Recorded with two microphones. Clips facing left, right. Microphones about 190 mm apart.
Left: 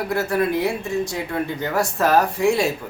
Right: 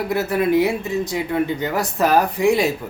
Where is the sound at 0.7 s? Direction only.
20° right (ahead or behind).